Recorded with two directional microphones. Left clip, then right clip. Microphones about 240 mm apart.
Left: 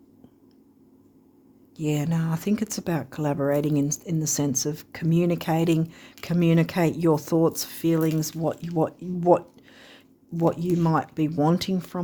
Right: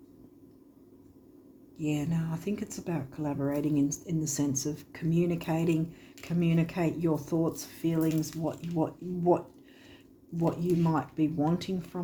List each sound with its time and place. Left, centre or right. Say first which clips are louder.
1.7 s speech: left 5 dB; left
9.8 s a sound: left 4 dB; left
10.8 s speech: left 5 dB; left